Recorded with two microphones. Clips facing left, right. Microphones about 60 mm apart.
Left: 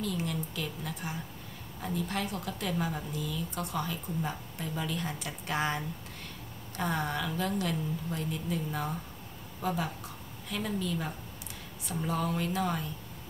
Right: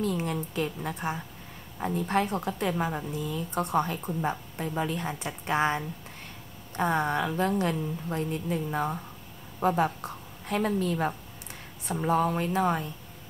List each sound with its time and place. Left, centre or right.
0.0 s a woman's voice: right
6.8 s a woman's voice: right